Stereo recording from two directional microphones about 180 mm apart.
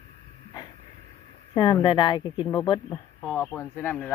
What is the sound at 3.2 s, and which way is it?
Speech, 5° left (ahead or behind).